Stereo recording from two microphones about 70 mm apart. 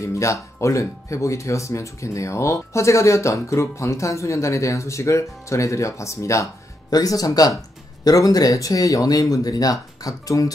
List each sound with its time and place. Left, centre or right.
0.0 s speech: left
6.9 s speech: left